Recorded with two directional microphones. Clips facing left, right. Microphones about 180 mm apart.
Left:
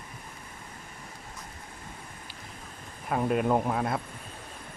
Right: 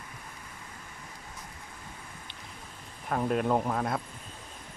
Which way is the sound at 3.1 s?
5° left (ahead or behind).